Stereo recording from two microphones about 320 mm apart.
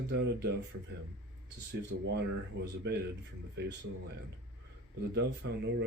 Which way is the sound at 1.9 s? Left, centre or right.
Right.